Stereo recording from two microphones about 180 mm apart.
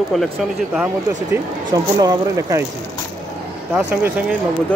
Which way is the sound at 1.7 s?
20° right (ahead or behind).